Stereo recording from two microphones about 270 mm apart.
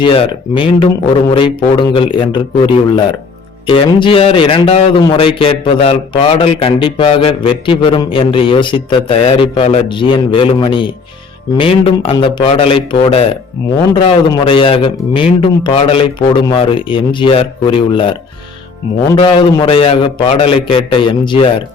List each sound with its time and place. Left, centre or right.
0.0 s a man's voice: centre
19.1 s a man's voice: centre